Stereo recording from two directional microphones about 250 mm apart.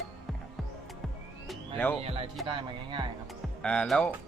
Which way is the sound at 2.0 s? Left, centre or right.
Right.